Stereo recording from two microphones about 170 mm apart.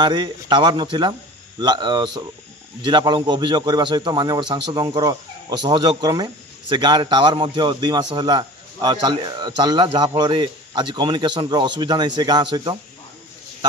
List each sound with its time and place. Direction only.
0.0 s a man's voice: 25° right (ahead or behind)